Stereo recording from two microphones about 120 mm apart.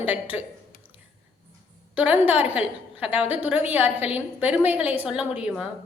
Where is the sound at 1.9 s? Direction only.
15° right (ahead or behind).